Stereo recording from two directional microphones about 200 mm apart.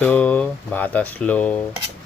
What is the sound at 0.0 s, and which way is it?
Speech, 10° left (ahead or behind).